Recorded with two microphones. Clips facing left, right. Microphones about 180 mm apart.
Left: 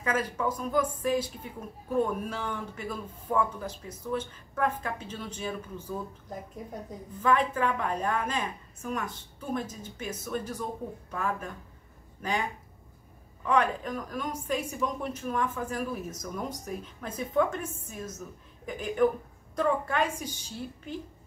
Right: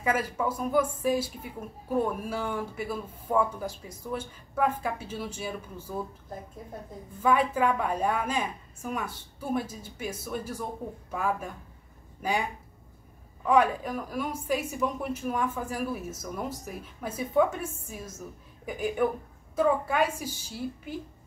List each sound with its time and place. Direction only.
0.0 s a woman's voice: 10° right (ahead or behind)
7.2 s a woman's voice: 10° right (ahead or behind)
13.5 s a woman's voice: 10° right (ahead or behind)